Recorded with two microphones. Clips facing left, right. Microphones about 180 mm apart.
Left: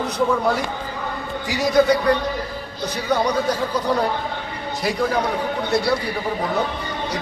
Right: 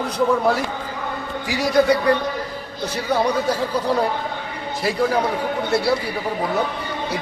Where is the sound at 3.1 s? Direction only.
5° right (ahead or behind).